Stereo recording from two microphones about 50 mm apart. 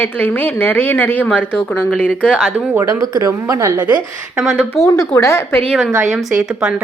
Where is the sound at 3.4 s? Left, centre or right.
Right.